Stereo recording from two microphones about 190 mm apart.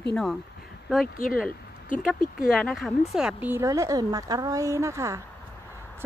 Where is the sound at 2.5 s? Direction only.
Centre (ahead or behind).